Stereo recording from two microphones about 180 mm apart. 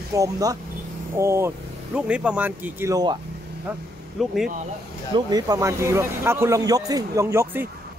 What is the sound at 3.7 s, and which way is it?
Speech, 10° right (ahead or behind).